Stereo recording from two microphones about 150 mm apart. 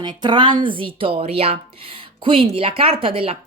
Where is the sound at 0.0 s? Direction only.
30° right (ahead or behind).